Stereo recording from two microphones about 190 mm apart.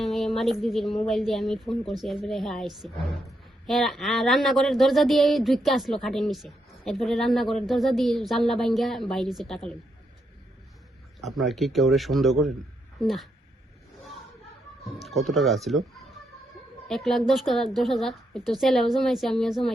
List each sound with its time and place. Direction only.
0.0 s a man's voice: centre (ahead or behind)
11.2 s a man's voice: centre (ahead or behind)
15.0 s a man's voice: centre (ahead or behind)
16.9 s a man's voice: centre (ahead or behind)